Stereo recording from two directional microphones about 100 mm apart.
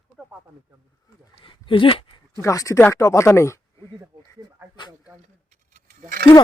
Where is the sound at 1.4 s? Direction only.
60° left (ahead or behind).